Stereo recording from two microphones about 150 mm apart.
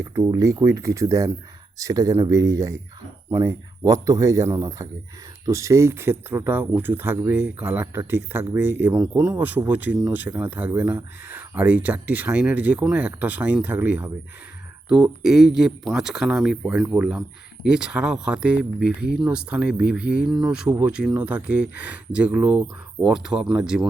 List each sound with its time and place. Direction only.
0.0 s speech: 20° right (ahead or behind); by 20.7 s 5° right (ahead or behind)
20.7 s speech: 20° right (ahead or behind)